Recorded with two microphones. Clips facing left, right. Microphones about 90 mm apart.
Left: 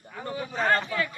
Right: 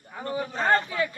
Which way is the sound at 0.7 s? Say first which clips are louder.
Right 2 dB; 20° right (ahead or behind).